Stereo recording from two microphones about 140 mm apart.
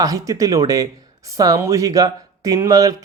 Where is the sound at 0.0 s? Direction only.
25° right (ahead or behind).